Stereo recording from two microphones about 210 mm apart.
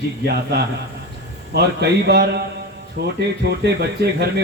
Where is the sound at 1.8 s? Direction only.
50° right (ahead or behind).